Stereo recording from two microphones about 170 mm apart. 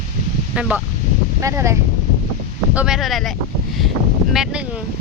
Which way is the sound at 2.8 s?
5° right (ahead or behind).